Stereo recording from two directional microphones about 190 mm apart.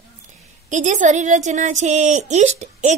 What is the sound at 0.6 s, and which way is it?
Speech, 40° right (ahead or behind).